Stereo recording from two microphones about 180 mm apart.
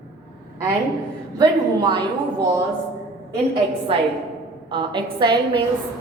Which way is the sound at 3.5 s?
30° right (ahead or behind).